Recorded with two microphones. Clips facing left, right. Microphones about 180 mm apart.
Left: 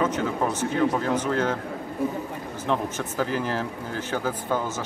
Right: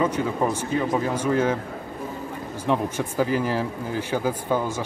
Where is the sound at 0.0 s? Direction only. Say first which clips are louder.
Right 2 dB; 10° right (ahead or behind).